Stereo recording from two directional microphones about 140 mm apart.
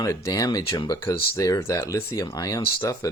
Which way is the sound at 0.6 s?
35° left (ahead or behind).